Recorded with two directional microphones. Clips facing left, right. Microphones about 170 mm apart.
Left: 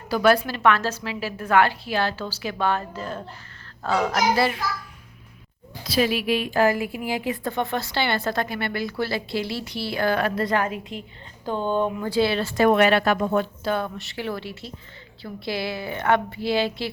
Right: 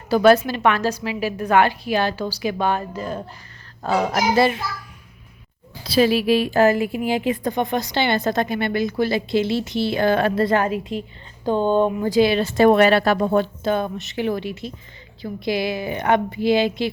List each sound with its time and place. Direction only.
0.1 s a woman's voice: 25° right (ahead or behind)
5.8 s a woman's voice: 30° right (ahead or behind)
12.0 s a woman's voice: 15° right (ahead or behind)
12.6 s a woman's voice: 35° right (ahead or behind); by 16.9 s 20° right (ahead or behind)